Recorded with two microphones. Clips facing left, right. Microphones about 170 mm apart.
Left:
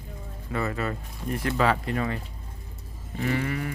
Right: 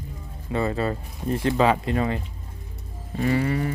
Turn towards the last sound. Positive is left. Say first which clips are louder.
# right 5 dB
turn(degrees=-30)  # may be behind; listen again after turning